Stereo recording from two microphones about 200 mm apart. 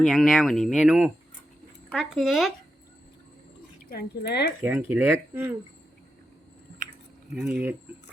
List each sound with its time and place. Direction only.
0.1 s speech: centre (ahead or behind)
3.8 s speech: 50° left (ahead or behind)
4.6 s speech: 10° right (ahead or behind)
7.4 s speech: 10° right (ahead or behind)